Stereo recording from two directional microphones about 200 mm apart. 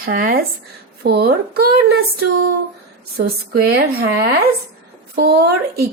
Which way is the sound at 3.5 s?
50° right (ahead or behind).